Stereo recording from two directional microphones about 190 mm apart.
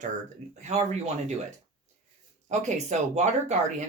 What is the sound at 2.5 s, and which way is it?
Speech, 35° right (ahead or behind).